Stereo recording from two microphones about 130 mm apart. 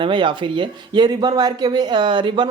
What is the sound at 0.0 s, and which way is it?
Speech, 40° right (ahead or behind).